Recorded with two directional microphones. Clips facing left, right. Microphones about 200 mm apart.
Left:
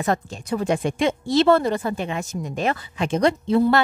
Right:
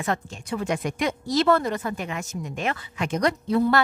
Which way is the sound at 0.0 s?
40° left (ahead or behind).